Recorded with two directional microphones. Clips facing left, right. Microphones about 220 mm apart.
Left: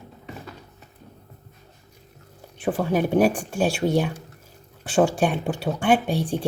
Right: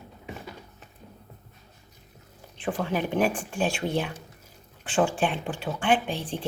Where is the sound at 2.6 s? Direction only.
40° left (ahead or behind).